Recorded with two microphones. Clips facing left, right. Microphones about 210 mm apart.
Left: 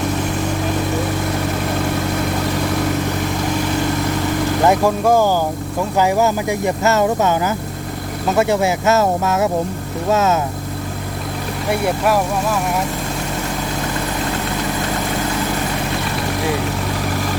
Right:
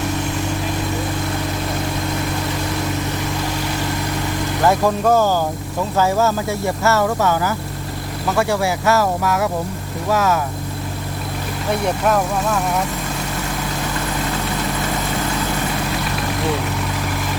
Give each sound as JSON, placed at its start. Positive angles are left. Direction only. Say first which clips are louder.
{"t": 4.6, "sound": "speech", "louder": "left 1 dB", "side_deg": 15}
{"t": 11.7, "sound": "speech", "louder": "left 1 dB", "side_deg": 5}